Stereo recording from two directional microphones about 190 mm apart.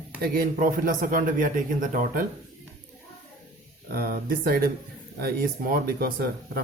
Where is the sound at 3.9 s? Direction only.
50° right (ahead or behind).